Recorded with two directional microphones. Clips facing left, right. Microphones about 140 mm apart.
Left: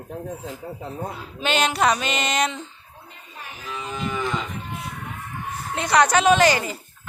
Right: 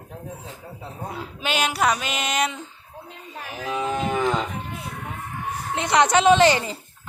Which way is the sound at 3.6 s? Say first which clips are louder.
Right 6 dB; 60° right (ahead or behind).